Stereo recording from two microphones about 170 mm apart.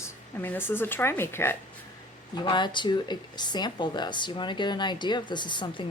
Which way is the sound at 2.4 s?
25° left (ahead or behind).